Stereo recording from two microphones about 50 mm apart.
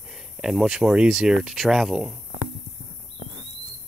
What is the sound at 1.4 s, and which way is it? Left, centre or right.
Speech, centre.